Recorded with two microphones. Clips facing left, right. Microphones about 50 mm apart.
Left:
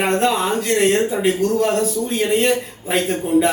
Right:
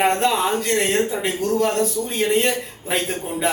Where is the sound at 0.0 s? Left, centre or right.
Centre.